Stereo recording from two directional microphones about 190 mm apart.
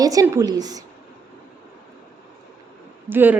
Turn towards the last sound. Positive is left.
turn(degrees=-10)  # may be behind; listen again after turning